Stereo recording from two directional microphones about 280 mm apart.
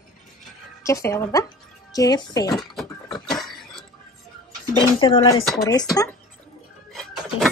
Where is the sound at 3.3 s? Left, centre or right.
Centre.